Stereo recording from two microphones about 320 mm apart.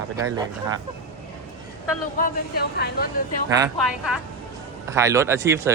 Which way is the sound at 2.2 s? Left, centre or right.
Left.